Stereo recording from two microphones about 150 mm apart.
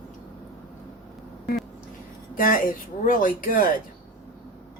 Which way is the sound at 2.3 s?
70° left (ahead or behind).